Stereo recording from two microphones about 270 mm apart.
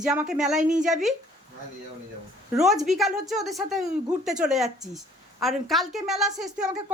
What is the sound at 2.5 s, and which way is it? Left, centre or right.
A woman's voice, centre.